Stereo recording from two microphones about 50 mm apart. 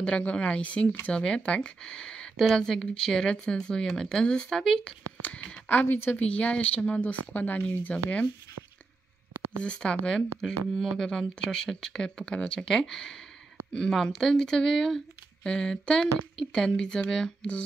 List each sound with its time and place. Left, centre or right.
0.0 s speech: left
5.2 s speech: left
6.2 s speech: left
9.6 s speech: left
10.7 s speech: centre